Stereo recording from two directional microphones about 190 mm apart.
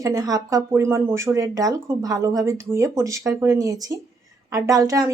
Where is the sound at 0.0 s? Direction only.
15° right (ahead or behind).